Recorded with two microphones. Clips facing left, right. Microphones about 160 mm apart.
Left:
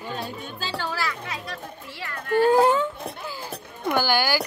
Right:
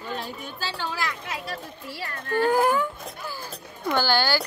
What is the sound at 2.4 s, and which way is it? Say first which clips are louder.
Speech: left 3 dB; 25° left (ahead or behind).